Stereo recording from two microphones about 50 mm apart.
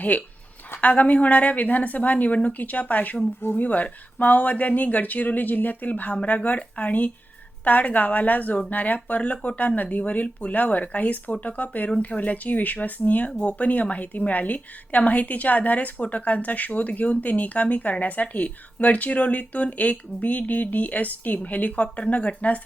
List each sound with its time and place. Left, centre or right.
0.0 s speech: left